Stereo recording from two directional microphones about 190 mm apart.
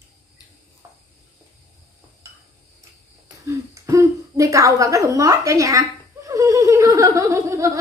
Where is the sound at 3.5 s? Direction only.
15° right (ahead or behind).